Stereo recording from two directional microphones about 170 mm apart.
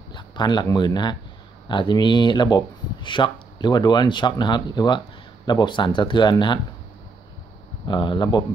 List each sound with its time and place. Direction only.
0.1 s speech: 25° left (ahead or behind)
7.8 s speech: 25° left (ahead or behind)